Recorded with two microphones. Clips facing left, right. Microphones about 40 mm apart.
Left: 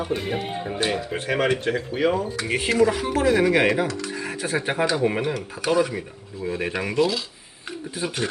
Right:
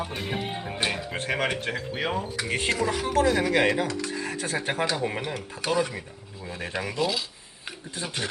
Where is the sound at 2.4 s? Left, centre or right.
Centre.